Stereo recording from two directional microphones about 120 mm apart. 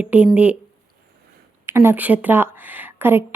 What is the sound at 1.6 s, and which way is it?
Speech, 20° right (ahead or behind).